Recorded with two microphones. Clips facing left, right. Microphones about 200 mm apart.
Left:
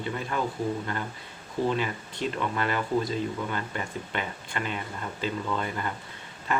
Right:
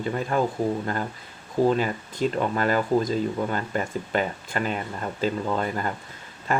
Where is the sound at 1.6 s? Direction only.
45° right (ahead or behind).